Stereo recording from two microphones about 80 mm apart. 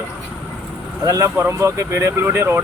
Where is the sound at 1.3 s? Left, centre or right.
Right.